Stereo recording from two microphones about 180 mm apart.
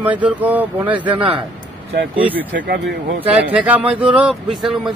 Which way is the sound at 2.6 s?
60° right (ahead or behind).